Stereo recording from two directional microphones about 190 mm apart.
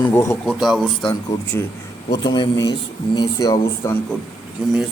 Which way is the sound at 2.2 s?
20° left (ahead or behind).